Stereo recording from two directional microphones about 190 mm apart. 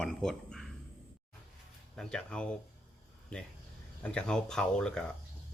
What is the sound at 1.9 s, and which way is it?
Speech, 5° left (ahead or behind).